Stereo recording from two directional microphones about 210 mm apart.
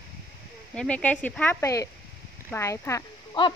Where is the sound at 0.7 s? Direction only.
5° left (ahead or behind).